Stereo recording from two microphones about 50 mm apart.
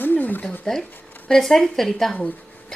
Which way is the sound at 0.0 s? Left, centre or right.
Left.